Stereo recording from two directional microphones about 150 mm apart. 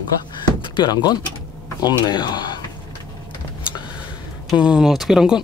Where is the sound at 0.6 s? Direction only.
30° left (ahead or behind).